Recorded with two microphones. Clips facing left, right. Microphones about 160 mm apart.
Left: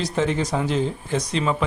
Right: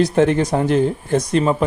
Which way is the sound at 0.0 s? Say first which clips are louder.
Right 8 dB; 60° right (ahead or behind).